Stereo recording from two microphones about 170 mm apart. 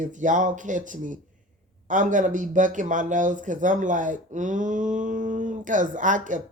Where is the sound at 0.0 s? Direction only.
50° right (ahead or behind).